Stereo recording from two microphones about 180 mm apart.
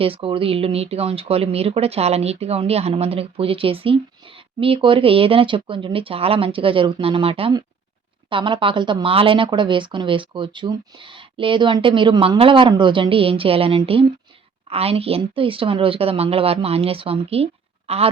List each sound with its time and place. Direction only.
0.0 s speech: 30° right (ahead or behind)